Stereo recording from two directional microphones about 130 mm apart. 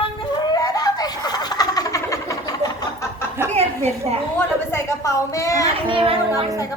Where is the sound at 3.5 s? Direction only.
55° right (ahead or behind).